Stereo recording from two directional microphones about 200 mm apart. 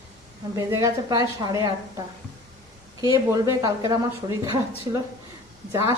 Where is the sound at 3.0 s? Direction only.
15° right (ahead or behind).